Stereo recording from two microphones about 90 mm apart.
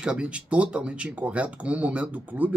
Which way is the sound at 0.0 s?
10° right (ahead or behind).